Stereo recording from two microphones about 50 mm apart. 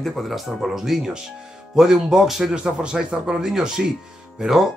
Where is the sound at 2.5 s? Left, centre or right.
Centre.